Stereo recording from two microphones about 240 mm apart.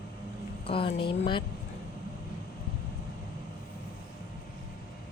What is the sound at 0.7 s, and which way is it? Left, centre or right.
Speech, left.